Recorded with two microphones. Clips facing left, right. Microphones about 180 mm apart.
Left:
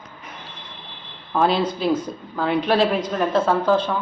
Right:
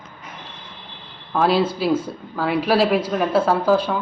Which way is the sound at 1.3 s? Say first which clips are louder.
Right 1 dB; centre (ahead or behind).